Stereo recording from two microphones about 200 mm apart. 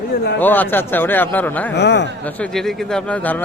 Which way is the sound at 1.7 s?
60° left (ahead or behind).